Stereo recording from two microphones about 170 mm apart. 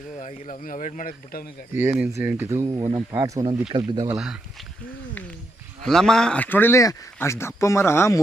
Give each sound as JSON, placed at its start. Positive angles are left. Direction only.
{"t": 0.2, "sound": "speech", "side_deg": 45}
{"t": 1.7, "sound": "speech", "side_deg": -10}
{"t": 5.8, "sound": "speech", "side_deg": 5}